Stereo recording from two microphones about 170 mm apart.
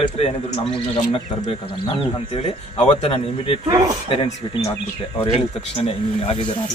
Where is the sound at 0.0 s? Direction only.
35° left (ahead or behind).